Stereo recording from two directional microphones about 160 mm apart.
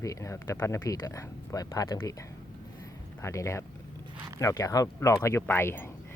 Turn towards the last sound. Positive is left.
turn(degrees=15)  # may be behind; listen again after turning